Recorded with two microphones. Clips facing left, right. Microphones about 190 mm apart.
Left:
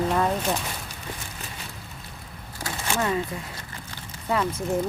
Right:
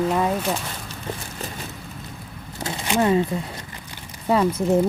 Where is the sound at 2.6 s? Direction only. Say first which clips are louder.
Right 6 dB; 20° right (ahead or behind).